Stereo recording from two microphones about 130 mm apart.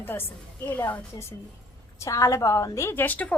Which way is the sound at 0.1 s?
15° left (ahead or behind).